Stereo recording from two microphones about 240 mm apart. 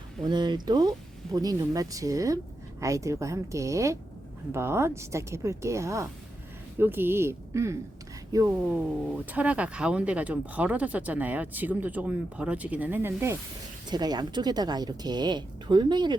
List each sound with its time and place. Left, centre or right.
0.2 s speech: centre